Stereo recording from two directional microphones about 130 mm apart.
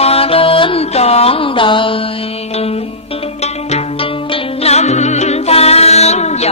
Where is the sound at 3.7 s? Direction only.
50° left (ahead or behind).